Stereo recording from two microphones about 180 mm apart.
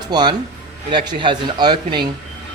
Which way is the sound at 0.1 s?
25° right (ahead or behind).